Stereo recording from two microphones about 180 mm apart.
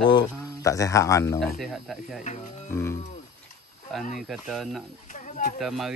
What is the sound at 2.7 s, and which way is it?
Speech, 15° left (ahead or behind).